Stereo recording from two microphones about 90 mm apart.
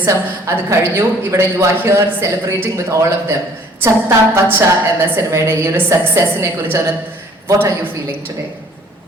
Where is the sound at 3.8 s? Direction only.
30° right (ahead or behind).